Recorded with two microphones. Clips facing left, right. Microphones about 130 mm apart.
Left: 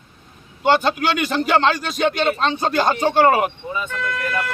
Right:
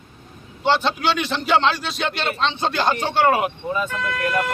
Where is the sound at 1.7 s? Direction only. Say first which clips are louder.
Left 5 dB; 45° left (ahead or behind).